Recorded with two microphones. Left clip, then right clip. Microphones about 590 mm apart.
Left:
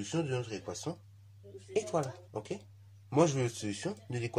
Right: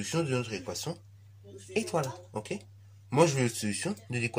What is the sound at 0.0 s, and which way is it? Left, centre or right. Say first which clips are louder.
Speech: right 4 dB; left.